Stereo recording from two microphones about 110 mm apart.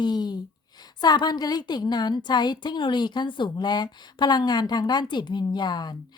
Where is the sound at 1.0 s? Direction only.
40° left (ahead or behind).